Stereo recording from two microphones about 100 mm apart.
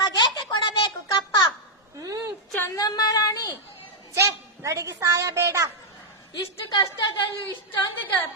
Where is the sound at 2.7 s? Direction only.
40° left (ahead or behind).